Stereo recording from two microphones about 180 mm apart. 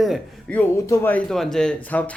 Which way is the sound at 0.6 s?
10° left (ahead or behind).